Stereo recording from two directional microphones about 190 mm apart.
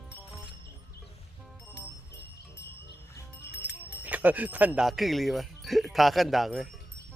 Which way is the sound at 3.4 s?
60° left (ahead or behind).